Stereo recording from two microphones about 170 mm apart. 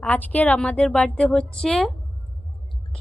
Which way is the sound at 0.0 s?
10° left (ahead or behind).